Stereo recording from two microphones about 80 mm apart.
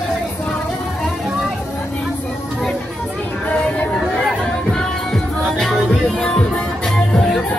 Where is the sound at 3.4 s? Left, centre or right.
Centre.